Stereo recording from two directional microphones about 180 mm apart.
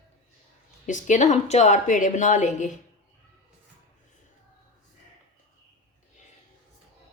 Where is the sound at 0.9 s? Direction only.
45° left (ahead or behind).